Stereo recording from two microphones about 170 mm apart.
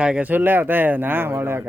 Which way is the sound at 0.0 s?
5° right (ahead or behind).